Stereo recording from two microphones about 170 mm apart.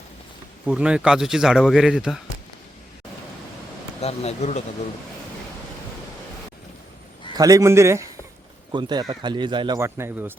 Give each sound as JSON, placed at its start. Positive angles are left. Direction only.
{"t": 0.6, "sound": "speech", "side_deg": -5}
{"t": 4.0, "sound": "speech", "side_deg": 40}
{"t": 7.3, "sound": "a man's voice", "side_deg": -20}